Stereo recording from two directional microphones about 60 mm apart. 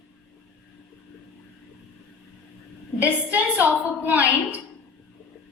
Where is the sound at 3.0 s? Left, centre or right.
Right.